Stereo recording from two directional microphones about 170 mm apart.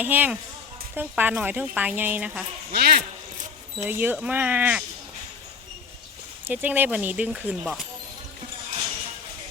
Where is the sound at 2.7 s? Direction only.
65° right (ahead or behind).